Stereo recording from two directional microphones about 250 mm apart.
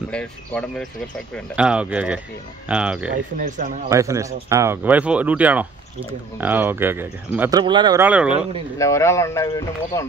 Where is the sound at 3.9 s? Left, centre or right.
Centre.